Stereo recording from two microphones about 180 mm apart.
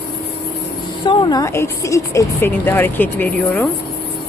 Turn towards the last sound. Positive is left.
turn(degrees=10)  # may be behind; listen again after turning